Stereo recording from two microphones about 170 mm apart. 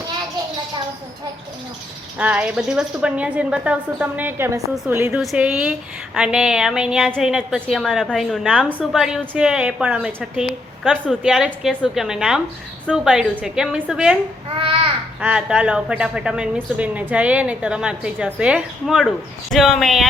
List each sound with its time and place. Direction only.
2.1 s a woman's voice: 10° right (ahead or behind)
14.5 s speech: 35° right (ahead or behind)
15.2 s a woman's voice: 5° right (ahead or behind)